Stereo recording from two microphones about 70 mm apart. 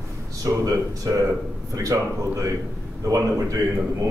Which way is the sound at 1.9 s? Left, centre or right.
Right.